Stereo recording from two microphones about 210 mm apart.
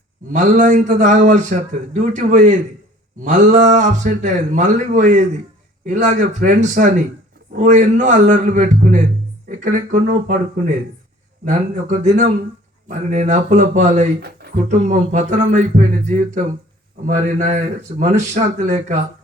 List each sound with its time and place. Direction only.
0.3 s a man's voice: 35° right (ahead or behind)
11.4 s a man's voice: 35° right (ahead or behind)